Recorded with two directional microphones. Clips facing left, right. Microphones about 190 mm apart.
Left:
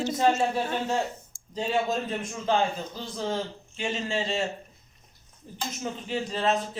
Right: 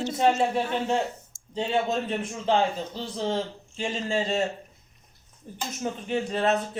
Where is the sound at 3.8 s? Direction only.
40° right (ahead or behind).